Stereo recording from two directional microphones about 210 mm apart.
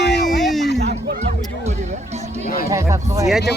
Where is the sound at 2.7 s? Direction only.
15° right (ahead or behind).